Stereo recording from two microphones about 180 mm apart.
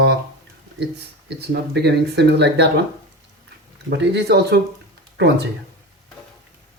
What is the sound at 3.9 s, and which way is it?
Speech, 65° right (ahead or behind).